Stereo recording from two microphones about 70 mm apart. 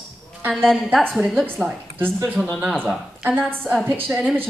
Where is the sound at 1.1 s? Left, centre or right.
Centre.